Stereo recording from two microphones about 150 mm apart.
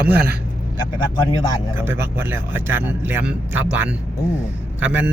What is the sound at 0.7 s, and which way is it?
Speech, 30° left (ahead or behind).